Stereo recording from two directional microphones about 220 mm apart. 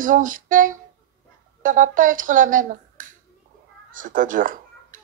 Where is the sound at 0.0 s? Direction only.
35° right (ahead or behind).